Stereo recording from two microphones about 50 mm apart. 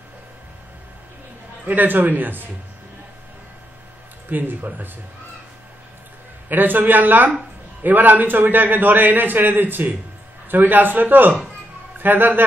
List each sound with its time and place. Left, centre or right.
1.7 s a man's voice: right
4.3 s a man's voice: right
6.5 s a man's voice: right